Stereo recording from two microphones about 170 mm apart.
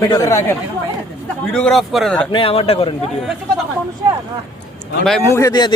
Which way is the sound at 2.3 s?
30° left (ahead or behind).